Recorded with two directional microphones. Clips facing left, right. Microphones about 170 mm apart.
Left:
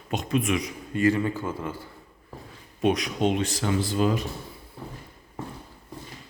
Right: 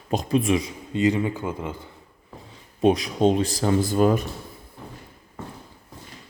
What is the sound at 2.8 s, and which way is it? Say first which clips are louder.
Speech: right 4 dB; 35° right (ahead or behind).